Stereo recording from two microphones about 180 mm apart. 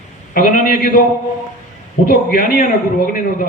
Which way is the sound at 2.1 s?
55° left (ahead or behind).